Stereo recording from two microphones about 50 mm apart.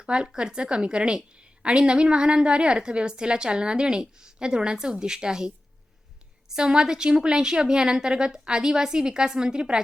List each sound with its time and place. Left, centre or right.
0.0 s a woman's voice: centre